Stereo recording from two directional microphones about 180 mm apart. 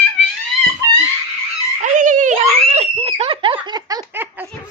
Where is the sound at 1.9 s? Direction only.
45° right (ahead or behind); by 4.2 s 20° right (ahead or behind).